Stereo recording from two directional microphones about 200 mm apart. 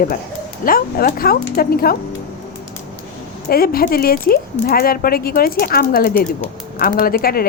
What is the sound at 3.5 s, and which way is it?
Speech, 50° left (ahead or behind).